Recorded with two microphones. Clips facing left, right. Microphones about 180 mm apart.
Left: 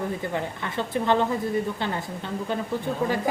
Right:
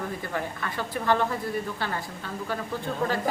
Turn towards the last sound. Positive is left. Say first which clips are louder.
# left 2 dB
turn(degrees=15)  # may be behind; listen again after turning